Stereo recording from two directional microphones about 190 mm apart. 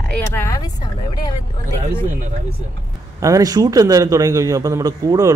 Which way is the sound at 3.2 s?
15° right (ahead or behind).